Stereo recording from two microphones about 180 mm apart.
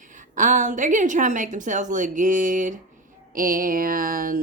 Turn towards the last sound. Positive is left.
turn(degrees=-50)  # may be behind; listen again after turning